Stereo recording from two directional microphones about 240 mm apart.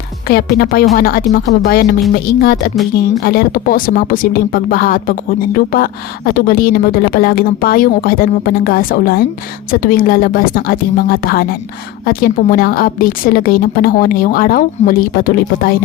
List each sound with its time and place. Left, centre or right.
0.3 s speech: left